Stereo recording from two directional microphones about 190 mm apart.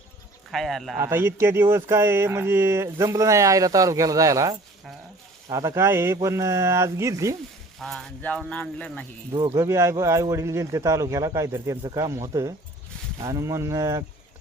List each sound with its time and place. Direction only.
0.5 s speech: centre (ahead or behind)
0.9 s speech: 15° right (ahead or behind)
7.8 s speech: centre (ahead or behind)
9.3 s speech: 25° right (ahead or behind)
9.6 s speech: 15° right (ahead or behind)